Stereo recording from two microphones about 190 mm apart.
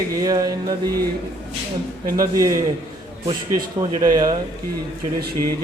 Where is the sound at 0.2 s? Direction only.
20° right (ahead or behind).